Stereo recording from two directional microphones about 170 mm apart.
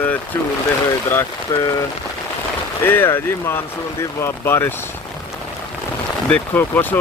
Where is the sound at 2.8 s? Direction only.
10° left (ahead or behind).